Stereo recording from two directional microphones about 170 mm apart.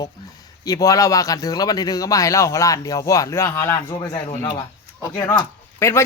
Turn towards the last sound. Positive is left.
turn(degrees=15)  # may be behind; listen again after turning